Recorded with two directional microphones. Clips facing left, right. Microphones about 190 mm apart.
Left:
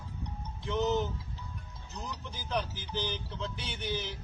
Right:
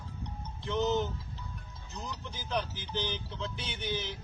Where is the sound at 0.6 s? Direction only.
5° left (ahead or behind).